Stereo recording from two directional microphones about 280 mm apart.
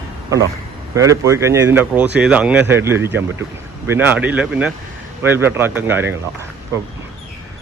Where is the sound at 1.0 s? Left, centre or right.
Centre.